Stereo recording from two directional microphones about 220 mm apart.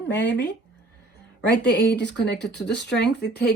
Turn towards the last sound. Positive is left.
turn(degrees=50)  # may be behind; listen again after turning